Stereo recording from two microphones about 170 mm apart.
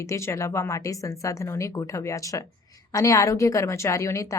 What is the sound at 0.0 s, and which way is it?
A woman's voice, 15° left (ahead or behind).